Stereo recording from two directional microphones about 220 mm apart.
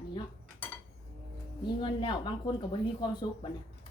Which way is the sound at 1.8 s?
20° left (ahead or behind).